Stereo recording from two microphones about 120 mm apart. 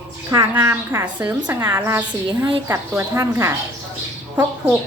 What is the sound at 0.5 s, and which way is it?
A woman's voice, 20° right (ahead or behind).